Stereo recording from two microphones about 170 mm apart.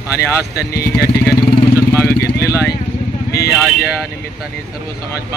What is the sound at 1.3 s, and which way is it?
Vehicle, 15° left (ahead or behind).